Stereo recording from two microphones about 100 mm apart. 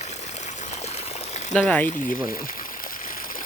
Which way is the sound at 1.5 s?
10° left (ahead or behind).